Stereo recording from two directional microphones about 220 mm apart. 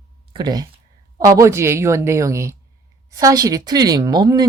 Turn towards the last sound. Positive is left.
turn(degrees=-20)  # may be behind; listen again after turning